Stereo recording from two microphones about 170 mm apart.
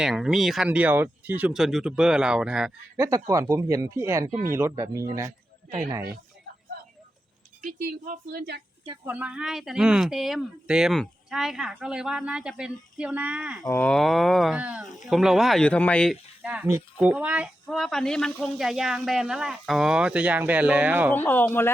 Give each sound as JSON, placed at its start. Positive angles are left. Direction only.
{"t": 0.0, "sound": "speech", "side_deg": -5}
{"t": 3.2, "sound": "speech", "side_deg": -15}
{"t": 4.3, "sound": "speech", "side_deg": -50}
{"t": 4.5, "sound": "speech", "side_deg": -15}
{"t": 7.6, "sound": "speech", "side_deg": -55}
{"t": 9.0, "sound": "speech", "side_deg": -10}
{"t": 13.7, "sound": "speech", "side_deg": 5}
{"t": 16.4, "sound": "speech", "side_deg": -10}
{"t": 21.1, "sound": "speech", "side_deg": 10}